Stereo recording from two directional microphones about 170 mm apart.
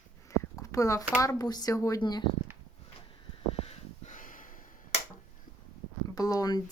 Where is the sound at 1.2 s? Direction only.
20° left (ahead or behind).